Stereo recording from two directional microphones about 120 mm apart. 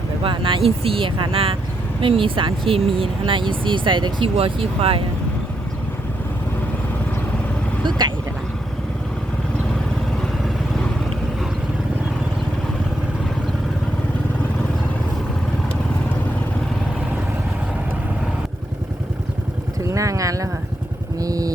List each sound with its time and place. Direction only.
0.2 s speech: 45° right (ahead or behind)
7.9 s vehicle: 35° right (ahead or behind)
19.9 s a sound: 25° right (ahead or behind)
21.2 s vehicle: 30° right (ahead or behind)